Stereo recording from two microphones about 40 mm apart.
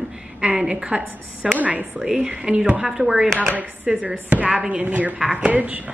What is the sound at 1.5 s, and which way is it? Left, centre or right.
Speech, right.